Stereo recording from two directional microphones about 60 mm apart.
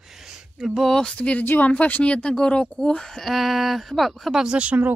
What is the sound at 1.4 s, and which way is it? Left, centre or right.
Speech, left.